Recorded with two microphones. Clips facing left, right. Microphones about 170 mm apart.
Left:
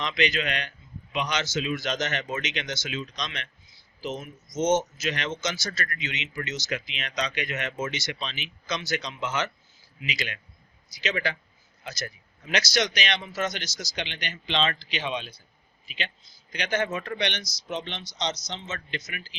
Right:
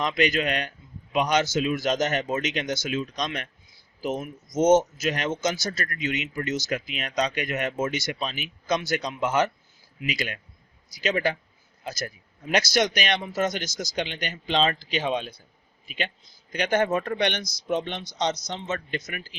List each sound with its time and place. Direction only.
0.0 s speech: 45° right (ahead or behind)
12.5 s speech: 50° right (ahead or behind)